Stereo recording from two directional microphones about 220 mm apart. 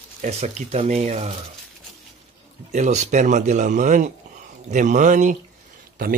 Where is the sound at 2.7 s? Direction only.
30° right (ahead or behind).